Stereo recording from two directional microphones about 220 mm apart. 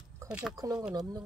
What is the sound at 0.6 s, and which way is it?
Speech, 15° right (ahead or behind).